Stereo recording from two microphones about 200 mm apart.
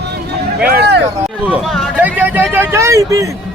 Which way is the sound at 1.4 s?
5° right (ahead or behind).